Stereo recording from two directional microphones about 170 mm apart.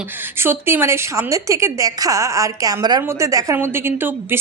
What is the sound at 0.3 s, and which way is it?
A woman's voice, 15° right (ahead or behind).